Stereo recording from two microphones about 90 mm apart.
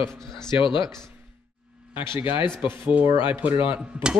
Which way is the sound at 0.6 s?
65° left (ahead or behind).